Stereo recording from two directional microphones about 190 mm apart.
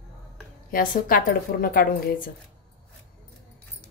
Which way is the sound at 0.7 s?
50° left (ahead or behind).